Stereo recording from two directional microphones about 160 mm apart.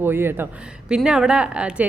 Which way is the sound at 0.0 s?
15° right (ahead or behind).